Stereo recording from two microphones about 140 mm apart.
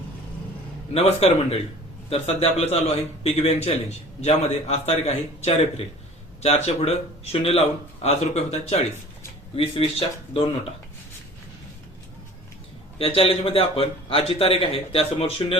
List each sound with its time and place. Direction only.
0.9 s a man's voice: 50° left (ahead or behind)
13.0 s a man's voice: 45° left (ahead or behind)